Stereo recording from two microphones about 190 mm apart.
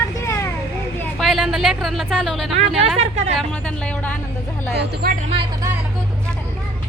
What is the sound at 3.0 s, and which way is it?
Speech, 35° right (ahead or behind).